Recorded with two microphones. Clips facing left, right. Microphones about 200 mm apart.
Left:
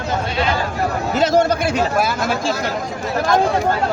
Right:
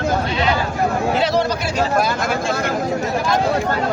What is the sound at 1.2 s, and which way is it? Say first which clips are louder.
Speech: left 3 dB; 45° left (ahead or behind).